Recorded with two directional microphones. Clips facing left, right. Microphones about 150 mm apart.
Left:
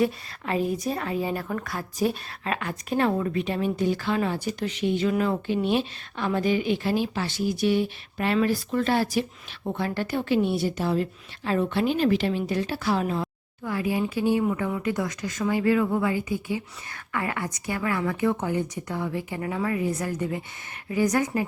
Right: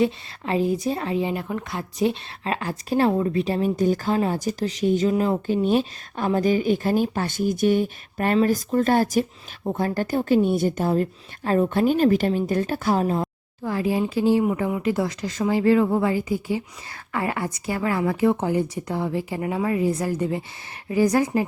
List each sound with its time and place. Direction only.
0.0 s a woman's voice: 25° right (ahead or behind)
14.7 s a woman's voice: 25° right (ahead or behind)